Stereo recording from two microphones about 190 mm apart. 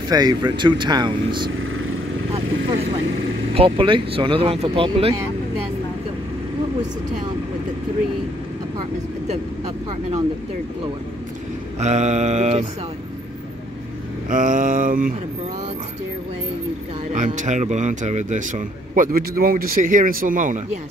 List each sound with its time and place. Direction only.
0.1 s speech: 20° right (ahead or behind)
3.5 s speech: 25° right (ahead or behind)
11.8 s speech: 35° right (ahead or behind)
14.3 s mantra: 40° right (ahead or behind)
17.1 s speech: 40° right (ahead or behind)